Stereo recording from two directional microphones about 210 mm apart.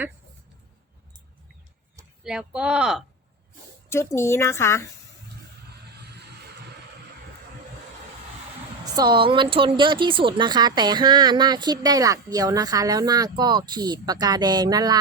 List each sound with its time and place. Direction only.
2.2 s speech: 5° right (ahead or behind)
3.8 s speech: 10° left (ahead or behind)
6.0 s vehicle: 50° right (ahead or behind)
8.9 s speech: 20° right (ahead or behind)